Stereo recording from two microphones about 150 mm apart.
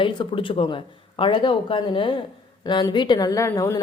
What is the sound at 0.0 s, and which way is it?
Speech, 35° left (ahead or behind).